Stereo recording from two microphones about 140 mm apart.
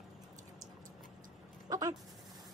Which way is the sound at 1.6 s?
25° right (ahead or behind).